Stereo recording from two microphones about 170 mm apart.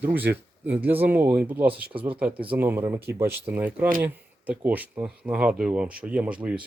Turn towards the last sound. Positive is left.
turn(degrees=-5)  # may be behind; listen again after turning